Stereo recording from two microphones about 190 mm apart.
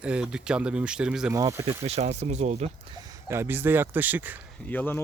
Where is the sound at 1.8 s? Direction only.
35° right (ahead or behind).